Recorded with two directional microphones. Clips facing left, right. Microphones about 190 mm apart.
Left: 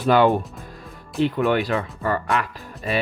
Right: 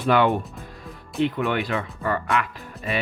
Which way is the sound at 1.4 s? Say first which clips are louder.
Left 4 dB; 35° left (ahead or behind).